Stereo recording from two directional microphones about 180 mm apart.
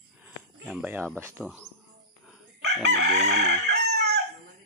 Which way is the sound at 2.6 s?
75° right (ahead or behind).